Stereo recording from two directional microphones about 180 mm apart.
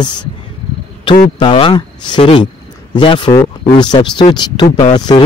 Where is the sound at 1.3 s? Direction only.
30° left (ahead or behind).